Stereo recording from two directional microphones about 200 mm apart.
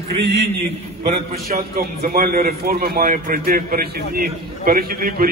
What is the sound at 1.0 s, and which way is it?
A man's voice, 50° right (ahead or behind).